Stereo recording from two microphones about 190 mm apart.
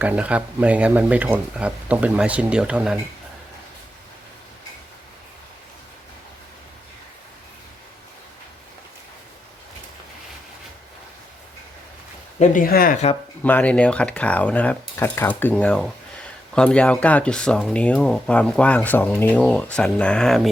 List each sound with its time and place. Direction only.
0.0 s speech: 5° right (ahead or behind)
12.4 s speech: 50° left (ahead or behind)
13.4 s speech: 5° left (ahead or behind)